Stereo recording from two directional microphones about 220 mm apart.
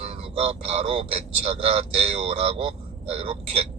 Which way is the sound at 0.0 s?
25° right (ahead or behind).